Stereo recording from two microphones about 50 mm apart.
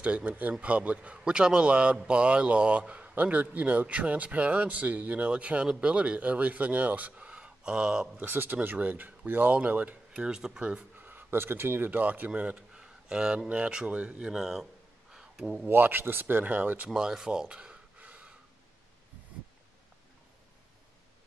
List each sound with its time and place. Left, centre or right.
0.0 s speech: right
8.2 s speech: right
10.1 s speech: centre
10.8 s speech: right
12.5 s a sound: centre
13.5 s speech: right
14.4 s a sound: centre
15.7 s speech: right
16.9 s gasp: centre